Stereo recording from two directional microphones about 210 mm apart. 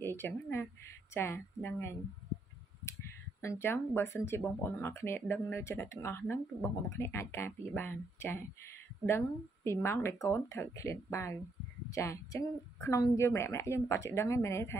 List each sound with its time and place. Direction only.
0.0 s speech: 10° left (ahead or behind)
3.4 s speech: 10° left (ahead or behind)
9.7 s speech: 10° left (ahead or behind)